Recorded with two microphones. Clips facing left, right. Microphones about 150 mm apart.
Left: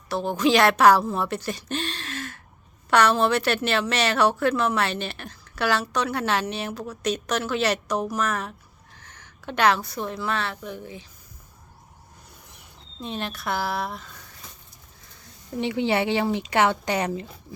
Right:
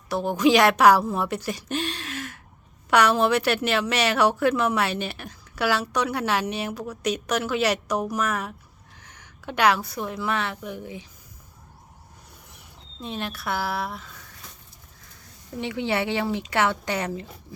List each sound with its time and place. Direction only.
0.1 s a woman's voice: 15° right (ahead or behind)
13.0 s speech: centre (ahead or behind)
15.5 s speech: 25° left (ahead or behind)